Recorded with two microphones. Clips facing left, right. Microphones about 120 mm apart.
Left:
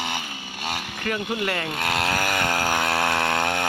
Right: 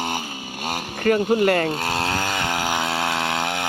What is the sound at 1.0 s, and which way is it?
Speech, 45° right (ahead or behind).